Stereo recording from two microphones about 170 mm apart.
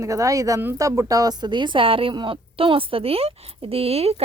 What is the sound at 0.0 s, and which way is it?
A woman's voice, 20° right (ahead or behind).